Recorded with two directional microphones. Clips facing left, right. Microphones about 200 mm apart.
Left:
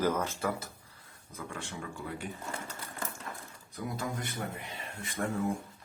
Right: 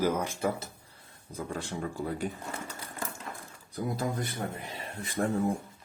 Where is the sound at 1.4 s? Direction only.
35° right (ahead or behind).